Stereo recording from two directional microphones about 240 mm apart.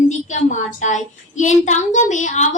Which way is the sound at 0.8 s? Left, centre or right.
Left.